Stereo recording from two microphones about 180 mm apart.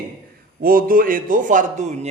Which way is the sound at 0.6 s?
55° right (ahead or behind).